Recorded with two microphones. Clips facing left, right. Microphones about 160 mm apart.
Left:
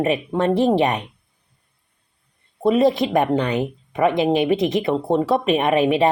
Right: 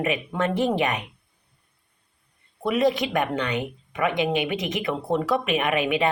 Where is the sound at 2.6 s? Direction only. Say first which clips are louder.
Left 5 dB; 30° left (ahead or behind).